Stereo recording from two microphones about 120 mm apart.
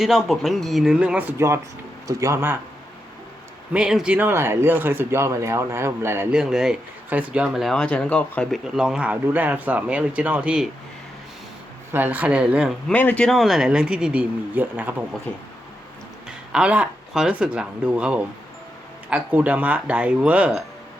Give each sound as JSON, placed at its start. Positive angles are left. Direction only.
{"t": 0.0, "sound": "speech", "side_deg": 0}
{"t": 3.7, "sound": "speech", "side_deg": -5}
{"t": 6.3, "sound": "speech", "side_deg": -5}
{"t": 11.9, "sound": "speech", "side_deg": -15}
{"t": 12.9, "sound": "speech", "side_deg": 15}
{"t": 15.3, "sound": "speech", "side_deg": 10}
{"t": 16.5, "sound": "speech", "side_deg": -10}